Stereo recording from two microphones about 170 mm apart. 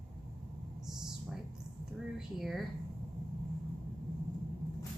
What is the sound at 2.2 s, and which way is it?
Speech, centre (ahead or behind).